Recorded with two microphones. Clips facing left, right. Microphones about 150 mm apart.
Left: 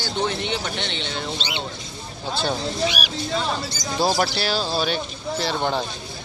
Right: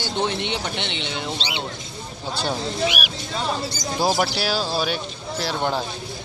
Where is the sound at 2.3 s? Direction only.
15° right (ahead or behind).